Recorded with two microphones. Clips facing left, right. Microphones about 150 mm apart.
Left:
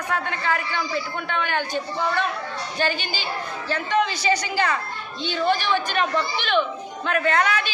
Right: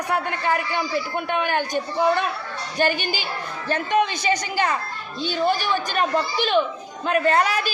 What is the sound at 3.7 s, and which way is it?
Speech, 50° right (ahead or behind).